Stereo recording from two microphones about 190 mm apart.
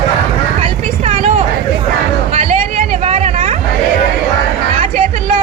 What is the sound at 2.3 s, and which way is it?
Vehicle, 35° right (ahead or behind).